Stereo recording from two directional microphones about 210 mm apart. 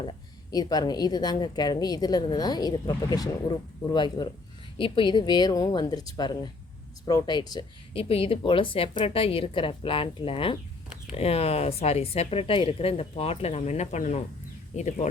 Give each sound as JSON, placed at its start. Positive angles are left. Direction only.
{"t": 0.5, "sound": "speech", "side_deg": 20}